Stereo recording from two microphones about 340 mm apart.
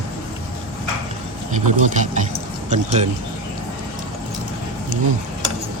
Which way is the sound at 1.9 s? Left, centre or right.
Right.